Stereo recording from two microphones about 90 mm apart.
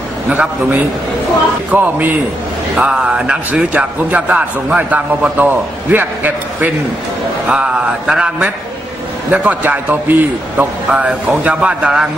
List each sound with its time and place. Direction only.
0.3 s a man's voice: 15° right (ahead or behind)